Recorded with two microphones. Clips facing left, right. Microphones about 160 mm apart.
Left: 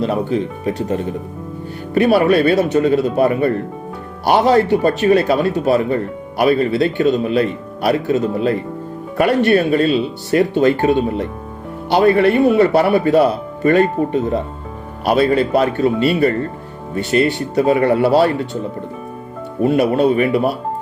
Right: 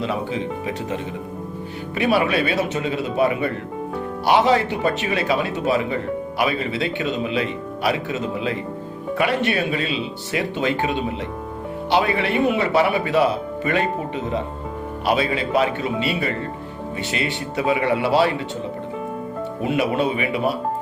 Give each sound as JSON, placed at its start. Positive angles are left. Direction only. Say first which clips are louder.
{"t": 0.0, "sound": "speech", "louder": "left 6 dB", "side_deg": 45}
{"t": 2.0, "sound": "speech", "louder": "left 7 dB", "side_deg": 40}
{"t": 16.9, "sound": "speech", "louder": "left 11 dB", "side_deg": 45}
{"t": 19.6, "sound": "speech", "louder": "left 7 dB", "side_deg": 45}